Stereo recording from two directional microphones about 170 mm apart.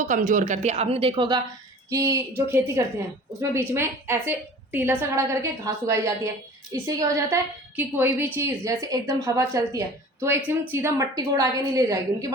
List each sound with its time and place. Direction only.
0.0 s speech: 45° right (ahead or behind); by 1.4 s 30° right (ahead or behind)
1.9 s a woman's voice: 20° right (ahead or behind)